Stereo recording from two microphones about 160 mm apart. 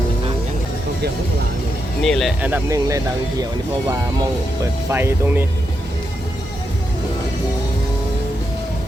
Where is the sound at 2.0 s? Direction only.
Centre (ahead or behind).